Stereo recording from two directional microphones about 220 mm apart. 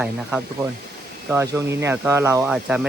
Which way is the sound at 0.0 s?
5° right (ahead or behind).